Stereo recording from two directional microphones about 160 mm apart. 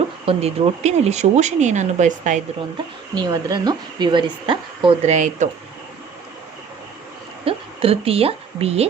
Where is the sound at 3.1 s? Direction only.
25° right (ahead or behind).